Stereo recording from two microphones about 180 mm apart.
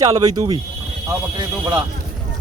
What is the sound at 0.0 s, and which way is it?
Speech, 20° right (ahead or behind).